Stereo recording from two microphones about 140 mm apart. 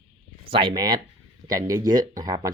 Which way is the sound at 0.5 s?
35° right (ahead or behind).